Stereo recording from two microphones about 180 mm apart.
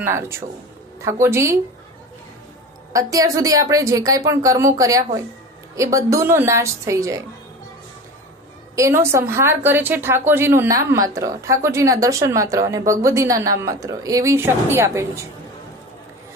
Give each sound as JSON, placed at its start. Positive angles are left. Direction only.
{"t": 0.0, "sound": "a woman's voice", "side_deg": -15}
{"t": 2.9, "sound": "a woman's voice", "side_deg": -20}
{"t": 8.7, "sound": "a woman's voice", "side_deg": -15}